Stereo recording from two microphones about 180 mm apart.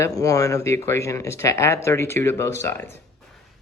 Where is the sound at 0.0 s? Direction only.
20° left (ahead or behind).